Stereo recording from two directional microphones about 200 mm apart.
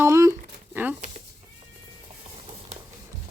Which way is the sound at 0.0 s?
15° right (ahead or behind).